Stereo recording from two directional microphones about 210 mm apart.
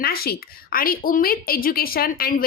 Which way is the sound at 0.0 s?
45° left (ahead or behind).